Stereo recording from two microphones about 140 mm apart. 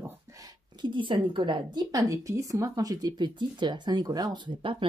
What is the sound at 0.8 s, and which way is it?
A woman's voice, 35° right (ahead or behind).